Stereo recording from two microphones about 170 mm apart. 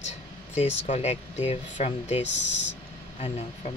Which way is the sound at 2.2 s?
90° left.